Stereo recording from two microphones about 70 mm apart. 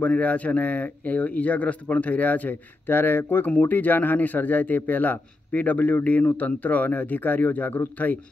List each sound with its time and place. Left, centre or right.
0.0 s speech: left